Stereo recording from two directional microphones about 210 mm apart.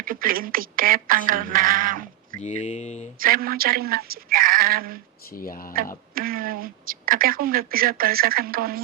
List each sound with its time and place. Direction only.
0.0 s a woman's voice: 40° right (ahead or behind)
2.4 s speech: 35° left (ahead or behind)
3.2 s a woman's voice: 45° right (ahead or behind)
5.4 s speech: 45° left (ahead or behind)
6.1 s a woman's voice: 45° right (ahead or behind)